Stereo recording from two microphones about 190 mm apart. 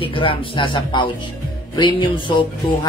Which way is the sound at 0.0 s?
30° left (ahead or behind).